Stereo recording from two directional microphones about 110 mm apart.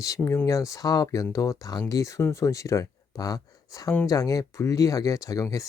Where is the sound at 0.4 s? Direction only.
30° left (ahead or behind).